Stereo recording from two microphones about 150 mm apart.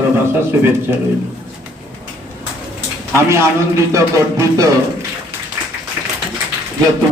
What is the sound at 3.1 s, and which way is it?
Music, 20° right (ahead or behind).